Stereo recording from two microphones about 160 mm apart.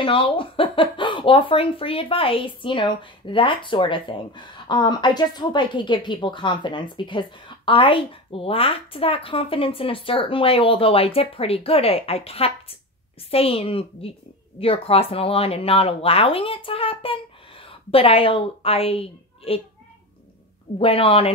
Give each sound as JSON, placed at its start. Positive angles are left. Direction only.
{"t": 0.0, "sound": "speech", "side_deg": 35}
{"t": 20.8, "sound": "speech", "side_deg": 35}